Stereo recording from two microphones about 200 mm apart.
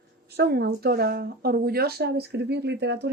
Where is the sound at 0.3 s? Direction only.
55° right (ahead or behind).